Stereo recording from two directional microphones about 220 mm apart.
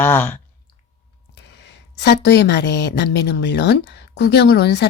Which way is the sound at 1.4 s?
50° left (ahead or behind).